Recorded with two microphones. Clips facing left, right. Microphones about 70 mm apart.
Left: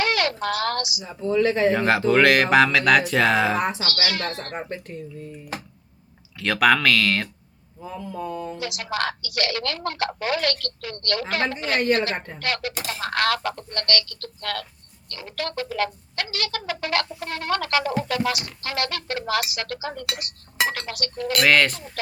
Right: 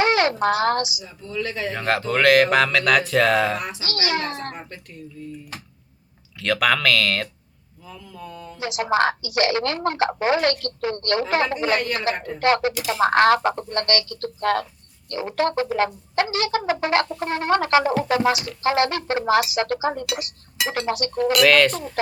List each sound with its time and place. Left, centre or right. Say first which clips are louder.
0.0 s a woman's voice: right 5 dB; right
1.0 s mantra: left 8 dB; left
1.7 s speech: left 4 dB; centre
3.6 s mantra: left 7 dB; left
3.8 s speech: right 2 dB; right
4.5 s speech: left 6 dB; left
6.4 s speech: left 1 dB; centre
7.9 s mantra: left 7 dB; left
8.5 s speech: right 7 dB; right
21.4 s speech: right 1 dB; centre
22.0 s speech: right 7 dB; right